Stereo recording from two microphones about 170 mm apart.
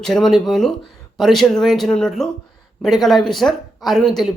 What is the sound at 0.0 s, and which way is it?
Speech, centre (ahead or behind).